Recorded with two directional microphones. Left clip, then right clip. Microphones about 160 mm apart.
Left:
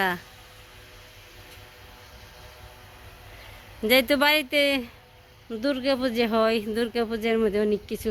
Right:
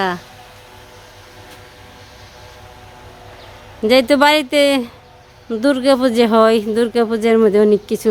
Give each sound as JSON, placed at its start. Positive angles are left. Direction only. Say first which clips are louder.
{"t": 3.8, "sound": "speech", "louder": "right 9 dB", "side_deg": -10}